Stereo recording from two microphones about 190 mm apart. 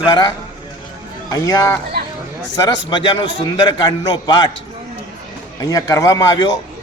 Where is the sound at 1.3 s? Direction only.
20° left (ahead or behind).